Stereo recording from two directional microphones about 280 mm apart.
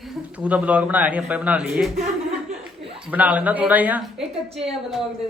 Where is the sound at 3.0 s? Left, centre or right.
Centre.